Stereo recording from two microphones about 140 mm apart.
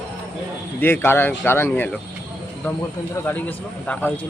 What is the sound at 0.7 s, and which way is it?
A man's voice, 15° left (ahead or behind).